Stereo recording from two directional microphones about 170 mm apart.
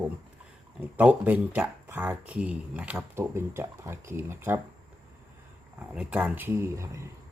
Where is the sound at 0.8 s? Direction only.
10° right (ahead or behind).